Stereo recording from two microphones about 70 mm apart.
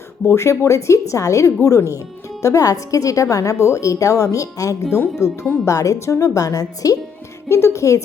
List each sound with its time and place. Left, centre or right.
0.3 s a woman's voice: left
5.6 s a woman's voice: left
7.4 s a woman's voice: left